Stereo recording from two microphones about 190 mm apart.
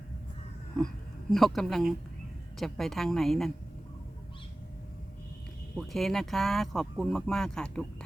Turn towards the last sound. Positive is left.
turn(degrees=5)  # may be behind; listen again after turning